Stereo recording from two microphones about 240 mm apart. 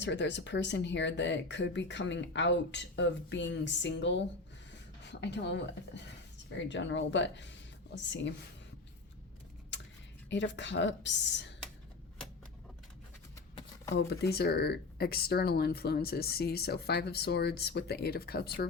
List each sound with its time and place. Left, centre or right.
0.0 s speech: left
9.7 s a sound: left
10.2 s speech: left
13.9 s speech: left